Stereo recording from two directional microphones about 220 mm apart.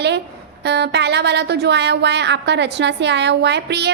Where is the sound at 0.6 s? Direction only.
50° right (ahead or behind).